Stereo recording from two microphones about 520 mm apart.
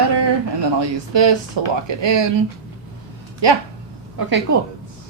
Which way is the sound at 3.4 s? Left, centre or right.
Right.